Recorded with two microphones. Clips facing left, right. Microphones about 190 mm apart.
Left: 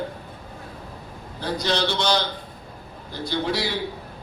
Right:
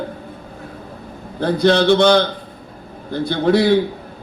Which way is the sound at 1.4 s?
55° right (ahead or behind).